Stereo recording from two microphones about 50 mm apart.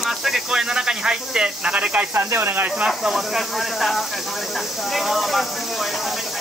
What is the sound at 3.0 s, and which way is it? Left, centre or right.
Speech, centre.